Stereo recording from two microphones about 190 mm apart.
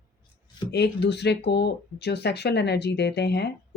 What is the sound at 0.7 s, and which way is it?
Speech, 60° left (ahead or behind).